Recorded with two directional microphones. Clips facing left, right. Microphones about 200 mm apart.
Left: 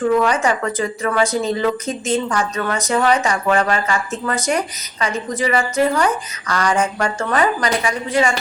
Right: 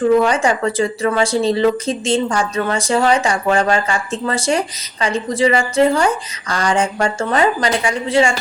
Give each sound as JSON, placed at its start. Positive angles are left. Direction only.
{"t": 0.2, "sound": "a woman's voice", "side_deg": -30}